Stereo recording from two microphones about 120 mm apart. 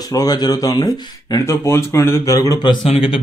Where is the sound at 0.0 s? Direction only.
30° left (ahead or behind).